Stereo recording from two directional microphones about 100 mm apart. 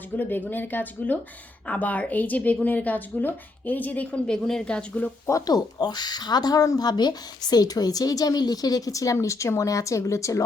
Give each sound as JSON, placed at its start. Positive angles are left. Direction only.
{"t": 0.2, "sound": "a woman's voice", "side_deg": 20}
{"t": 5.3, "sound": "speech", "side_deg": 40}